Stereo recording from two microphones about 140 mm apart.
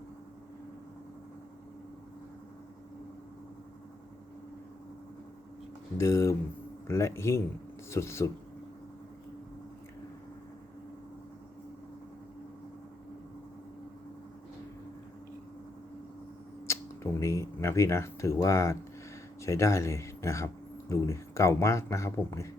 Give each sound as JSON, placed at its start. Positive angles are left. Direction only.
{"t": 6.0, "sound": "speech", "side_deg": 20}
{"t": 16.6, "sound": "speech", "side_deg": 20}